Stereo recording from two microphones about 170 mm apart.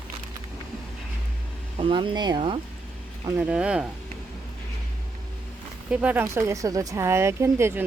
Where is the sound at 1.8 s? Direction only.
30° right (ahead or behind).